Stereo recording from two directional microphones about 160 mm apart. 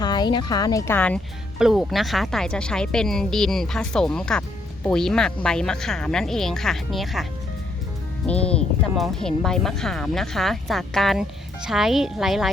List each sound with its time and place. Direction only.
0.0 s speech: 25° left (ahead or behind); by 1.2 s 10° left (ahead or behind)
1.5 s speech: 5° right (ahead or behind)
8.3 s speech: 5° left (ahead or behind)